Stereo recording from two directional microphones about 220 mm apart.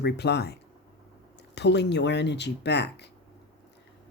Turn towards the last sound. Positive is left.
turn(degrees=50)  # may be behind; listen again after turning